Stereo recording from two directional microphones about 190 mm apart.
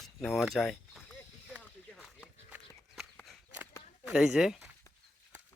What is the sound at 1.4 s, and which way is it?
Walk, 5° right (ahead or behind).